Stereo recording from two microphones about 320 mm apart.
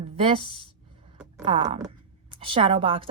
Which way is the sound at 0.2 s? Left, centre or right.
Centre.